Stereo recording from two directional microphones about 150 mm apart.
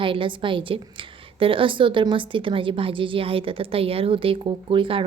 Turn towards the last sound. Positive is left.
turn(degrees=-35)  # may be behind; listen again after turning